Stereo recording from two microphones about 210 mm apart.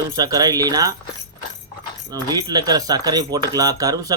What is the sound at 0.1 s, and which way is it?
Speech, 15° right (ahead or behind).